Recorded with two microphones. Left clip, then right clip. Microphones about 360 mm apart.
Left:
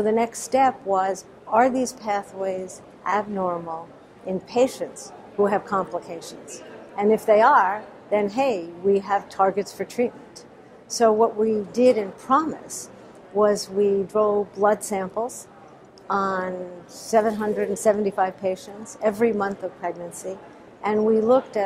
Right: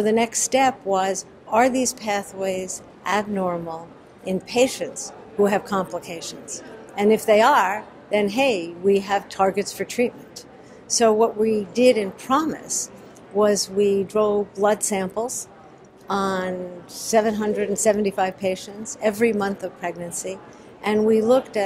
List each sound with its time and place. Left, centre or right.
0.0 s a woman's voice: left